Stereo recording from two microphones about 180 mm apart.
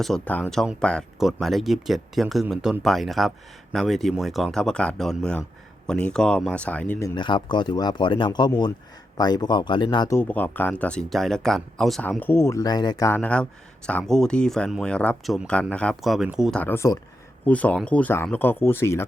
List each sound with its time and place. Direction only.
0.0 s speech: 5° left (ahead or behind)
7.2 s speech: 25° left (ahead or behind)
10.2 s speech: 10° left (ahead or behind)
16.6 s speech: 10° left (ahead or behind)